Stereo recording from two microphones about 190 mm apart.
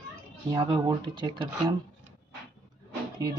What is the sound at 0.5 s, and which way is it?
Speech, 20° right (ahead or behind).